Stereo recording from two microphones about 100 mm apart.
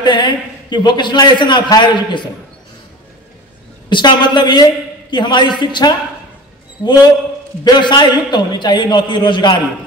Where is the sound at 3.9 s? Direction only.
50° left (ahead or behind).